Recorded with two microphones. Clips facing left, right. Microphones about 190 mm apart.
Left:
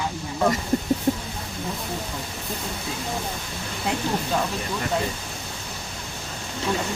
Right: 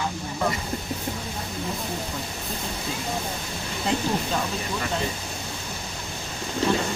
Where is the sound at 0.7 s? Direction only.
40° left (ahead or behind).